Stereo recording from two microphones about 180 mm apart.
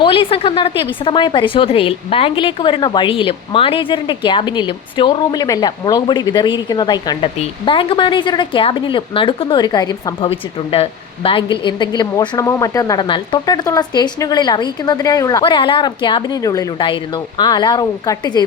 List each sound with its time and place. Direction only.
0.0 s a woman's voice: 30° left (ahead or behind)